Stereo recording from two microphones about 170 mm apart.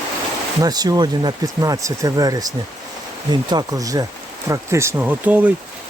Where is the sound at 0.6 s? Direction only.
25° right (ahead or behind).